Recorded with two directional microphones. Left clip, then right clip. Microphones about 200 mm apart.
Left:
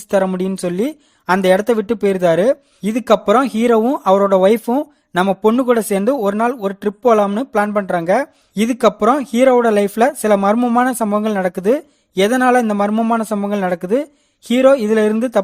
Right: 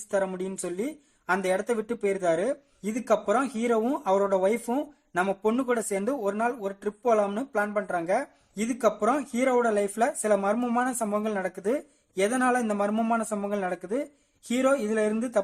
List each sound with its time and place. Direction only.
0.1 s speech: 40° left (ahead or behind)